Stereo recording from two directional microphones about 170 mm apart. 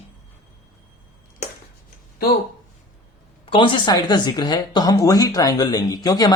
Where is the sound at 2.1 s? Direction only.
65° left (ahead or behind).